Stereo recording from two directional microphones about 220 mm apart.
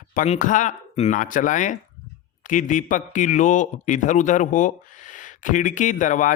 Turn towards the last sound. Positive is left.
turn(degrees=35)  # may be behind; listen again after turning